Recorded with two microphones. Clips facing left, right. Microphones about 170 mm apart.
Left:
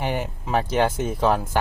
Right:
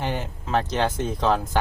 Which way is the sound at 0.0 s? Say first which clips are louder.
Left 2 dB; 10° left (ahead or behind).